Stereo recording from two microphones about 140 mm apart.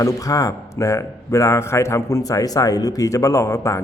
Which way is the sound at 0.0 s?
25° left (ahead or behind).